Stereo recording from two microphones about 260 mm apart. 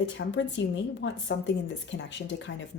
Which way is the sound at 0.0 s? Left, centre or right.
Left.